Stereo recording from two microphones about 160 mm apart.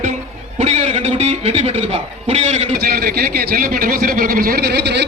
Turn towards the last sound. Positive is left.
turn(degrees=-90)